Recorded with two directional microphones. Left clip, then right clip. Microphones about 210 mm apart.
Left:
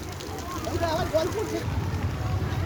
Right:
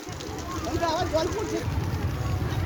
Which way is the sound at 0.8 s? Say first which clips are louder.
Even; 30° right (ahead or behind).